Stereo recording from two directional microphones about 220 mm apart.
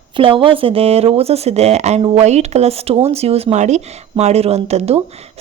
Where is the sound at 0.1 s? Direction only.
25° right (ahead or behind).